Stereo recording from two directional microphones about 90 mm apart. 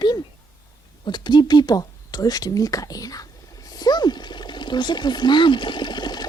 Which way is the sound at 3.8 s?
50° left (ahead or behind).